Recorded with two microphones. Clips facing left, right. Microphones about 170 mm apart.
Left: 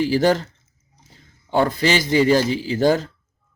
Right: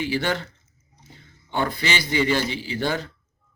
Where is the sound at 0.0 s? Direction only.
40° left (ahead or behind).